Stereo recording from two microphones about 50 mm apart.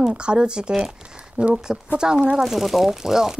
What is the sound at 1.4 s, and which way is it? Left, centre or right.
Speech, right.